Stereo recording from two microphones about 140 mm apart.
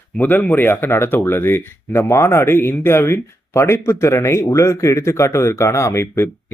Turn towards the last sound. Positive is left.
turn(degrees=20)  # may be behind; listen again after turning